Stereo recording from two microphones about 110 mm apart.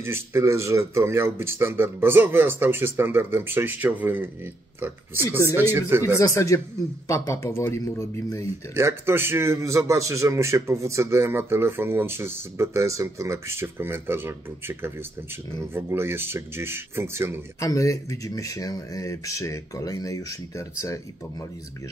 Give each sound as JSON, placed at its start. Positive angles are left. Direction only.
{"t": 0.0, "sound": "speech", "side_deg": -25}
{"t": 6.1, "sound": "speech", "side_deg": 30}
{"t": 8.7, "sound": "speech", "side_deg": -20}
{"t": 17.6, "sound": "speech", "side_deg": 30}